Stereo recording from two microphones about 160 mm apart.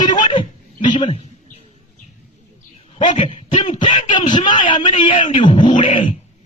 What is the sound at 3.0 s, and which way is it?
Speech, 30° left (ahead or behind).